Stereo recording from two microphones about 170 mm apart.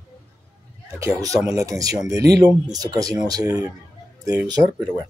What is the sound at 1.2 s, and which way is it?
Speech, 20° right (ahead or behind).